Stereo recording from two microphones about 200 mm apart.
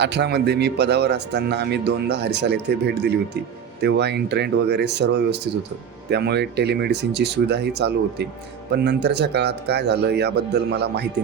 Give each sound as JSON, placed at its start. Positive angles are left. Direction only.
{"t": 0.0, "sound": "a man's voice", "side_deg": -60}